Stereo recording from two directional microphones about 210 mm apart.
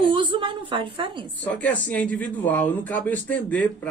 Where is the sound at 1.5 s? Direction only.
5° left (ahead or behind).